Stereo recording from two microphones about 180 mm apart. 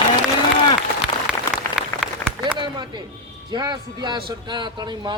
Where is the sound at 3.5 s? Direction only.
25° right (ahead or behind).